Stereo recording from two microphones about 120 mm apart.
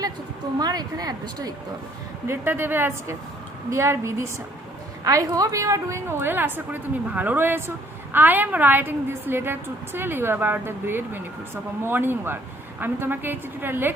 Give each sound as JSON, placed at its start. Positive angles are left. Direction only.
{"t": 0.6, "sound": "speech", "side_deg": -35}
{"t": 2.2, "sound": "a woman's voice", "side_deg": -20}